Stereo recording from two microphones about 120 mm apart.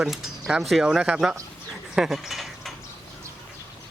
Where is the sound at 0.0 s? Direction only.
5° right (ahead or behind).